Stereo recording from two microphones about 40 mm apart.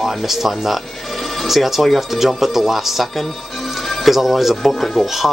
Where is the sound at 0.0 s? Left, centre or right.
Centre.